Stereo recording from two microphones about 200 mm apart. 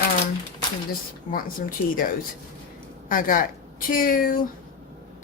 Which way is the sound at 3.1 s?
45° left (ahead or behind).